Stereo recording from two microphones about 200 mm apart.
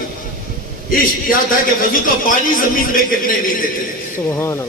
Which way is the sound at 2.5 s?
45° left (ahead or behind).